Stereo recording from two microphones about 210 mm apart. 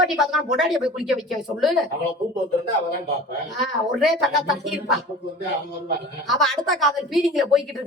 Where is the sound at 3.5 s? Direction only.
Centre (ahead or behind).